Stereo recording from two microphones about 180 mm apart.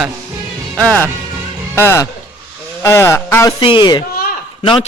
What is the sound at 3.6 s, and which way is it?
Speech, 25° left (ahead or behind).